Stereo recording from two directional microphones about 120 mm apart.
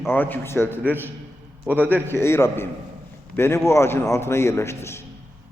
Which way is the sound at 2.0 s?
20° left (ahead or behind).